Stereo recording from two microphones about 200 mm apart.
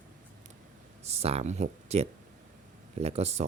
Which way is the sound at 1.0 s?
30° right (ahead or behind).